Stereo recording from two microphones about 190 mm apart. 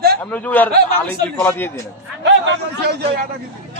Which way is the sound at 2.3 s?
70° right (ahead or behind).